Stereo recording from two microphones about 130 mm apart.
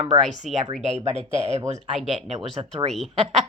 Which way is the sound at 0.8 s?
60° right (ahead or behind).